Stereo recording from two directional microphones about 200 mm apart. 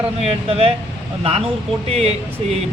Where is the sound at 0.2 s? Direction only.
30° right (ahead or behind).